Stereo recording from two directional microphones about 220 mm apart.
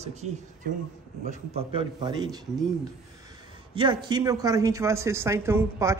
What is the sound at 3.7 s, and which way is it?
A man's voice, 20° right (ahead or behind).